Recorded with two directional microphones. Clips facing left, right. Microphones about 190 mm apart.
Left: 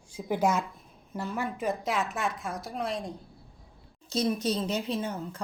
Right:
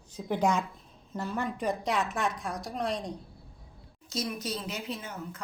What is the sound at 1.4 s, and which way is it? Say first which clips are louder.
A woman's voice: even; centre (ahead or behind).